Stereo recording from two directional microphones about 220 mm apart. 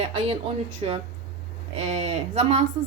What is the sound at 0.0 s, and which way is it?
Speech, 30° right (ahead or behind).